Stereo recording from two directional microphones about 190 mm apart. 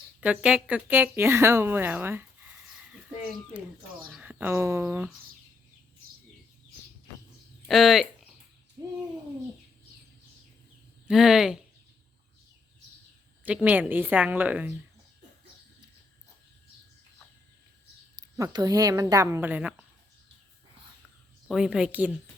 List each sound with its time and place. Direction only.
0.2 s speech: 5° right (ahead or behind)
4.1 s speech: 10° right (ahead or behind)
7.7 s a woman's voice: centre (ahead or behind)
11.1 s a woman's voice: centre (ahead or behind)
13.4 s speech: 5° right (ahead or behind)
18.3 s speech: 20° right (ahead or behind)
21.4 s a woman's voice: centre (ahead or behind)